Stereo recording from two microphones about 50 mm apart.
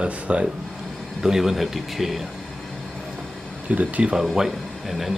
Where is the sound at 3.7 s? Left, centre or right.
Right.